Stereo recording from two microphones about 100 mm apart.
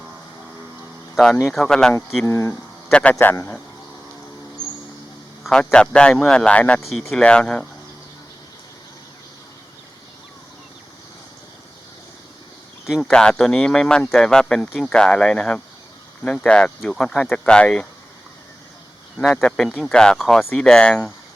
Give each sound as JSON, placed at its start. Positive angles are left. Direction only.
{"t": 1.5, "sound": "speech", "side_deg": 5}
{"t": 2.2, "sound": "speech", "side_deg": 25}
{"t": 2.9, "sound": "speech", "side_deg": 15}
{"t": 5.4, "sound": "speech", "side_deg": 5}
{"t": 6.8, "sound": "speech", "side_deg": 0}
{"t": 12.8, "sound": "a sound", "side_deg": 0}
{"t": 13.1, "sound": "speech", "side_deg": 10}
{"t": 19.1, "sound": "speech", "side_deg": 5}